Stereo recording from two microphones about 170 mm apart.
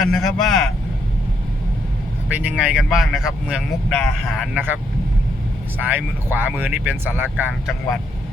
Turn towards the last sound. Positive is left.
turn(degrees=-10)  # may be behind; listen again after turning